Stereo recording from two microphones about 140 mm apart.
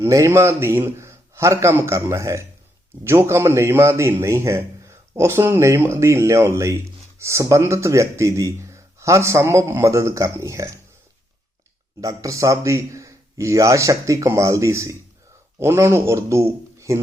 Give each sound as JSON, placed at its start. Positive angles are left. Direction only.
{"t": 0.0, "sound": "a man's voice", "side_deg": -20}
{"t": 11.9, "sound": "a man's voice", "side_deg": -25}